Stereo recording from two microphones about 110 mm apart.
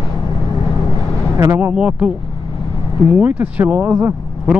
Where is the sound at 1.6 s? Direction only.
15° right (ahead or behind).